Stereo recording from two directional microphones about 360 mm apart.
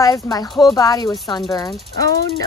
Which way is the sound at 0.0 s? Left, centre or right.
Centre.